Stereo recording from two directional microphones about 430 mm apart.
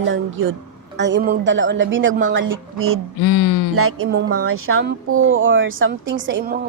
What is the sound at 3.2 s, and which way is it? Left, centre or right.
Speech, left.